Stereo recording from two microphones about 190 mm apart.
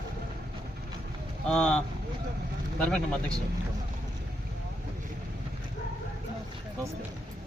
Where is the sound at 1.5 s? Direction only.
5° left (ahead or behind).